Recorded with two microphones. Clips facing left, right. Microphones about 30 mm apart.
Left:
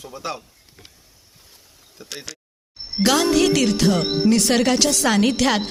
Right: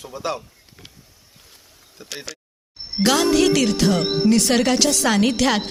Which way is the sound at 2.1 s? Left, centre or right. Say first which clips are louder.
Right 2 dB; centre.